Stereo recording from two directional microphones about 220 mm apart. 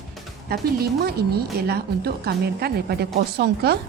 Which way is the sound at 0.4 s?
45° right (ahead or behind).